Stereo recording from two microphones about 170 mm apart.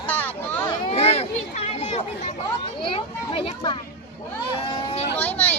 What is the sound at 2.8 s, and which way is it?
Children playing, 30° left (ahead or behind).